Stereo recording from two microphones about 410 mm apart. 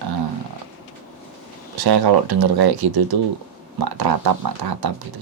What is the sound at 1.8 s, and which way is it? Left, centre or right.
Speech, right.